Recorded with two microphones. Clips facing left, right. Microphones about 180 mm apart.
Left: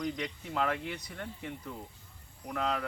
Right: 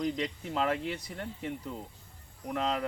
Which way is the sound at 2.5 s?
25° right (ahead or behind).